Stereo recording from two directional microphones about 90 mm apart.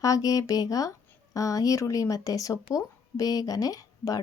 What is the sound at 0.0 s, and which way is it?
Speech, 40° left (ahead or behind).